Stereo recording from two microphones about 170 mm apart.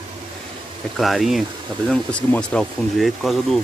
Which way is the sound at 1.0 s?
Centre (ahead or behind).